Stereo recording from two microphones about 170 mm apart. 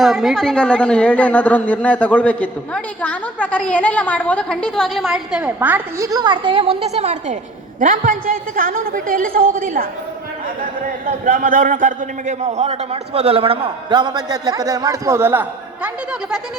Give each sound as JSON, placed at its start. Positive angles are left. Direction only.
{"t": 0.0, "sound": "a woman's voice", "side_deg": 0}
{"t": 11.0, "sound": "a man's voice", "side_deg": -55}